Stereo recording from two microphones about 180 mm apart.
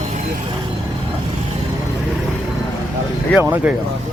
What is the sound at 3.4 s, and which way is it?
Speech, 10° right (ahead or behind).